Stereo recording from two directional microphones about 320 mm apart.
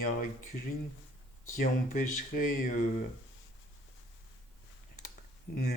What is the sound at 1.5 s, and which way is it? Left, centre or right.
Speech, left.